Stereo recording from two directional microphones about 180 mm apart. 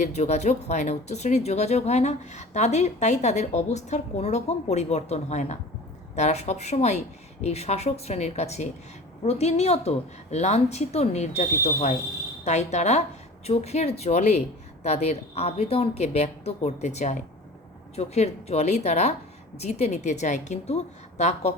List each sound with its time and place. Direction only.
0.0 s speech: 40° left (ahead or behind)